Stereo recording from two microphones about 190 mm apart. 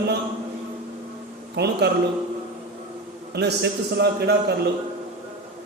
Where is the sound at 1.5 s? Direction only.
60° right (ahead or behind).